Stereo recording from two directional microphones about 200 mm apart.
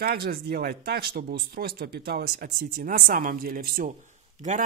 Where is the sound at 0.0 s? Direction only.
50° right (ahead or behind).